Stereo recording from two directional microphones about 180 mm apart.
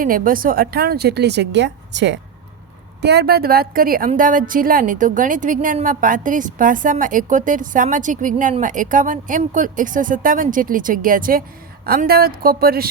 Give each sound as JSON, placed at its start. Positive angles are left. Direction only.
{"t": 0.0, "sound": "a woman's voice", "side_deg": -50}
{"t": 3.0, "sound": "a woman's voice", "side_deg": -65}